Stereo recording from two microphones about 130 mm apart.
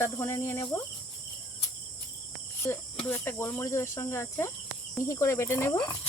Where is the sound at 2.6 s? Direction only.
25° left (ahead or behind).